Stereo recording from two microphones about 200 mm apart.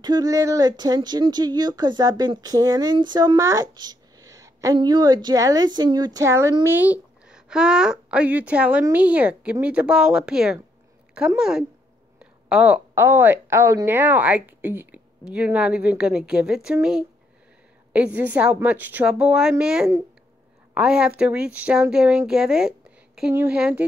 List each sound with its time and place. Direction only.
0.0 s speech: 20° right (ahead or behind)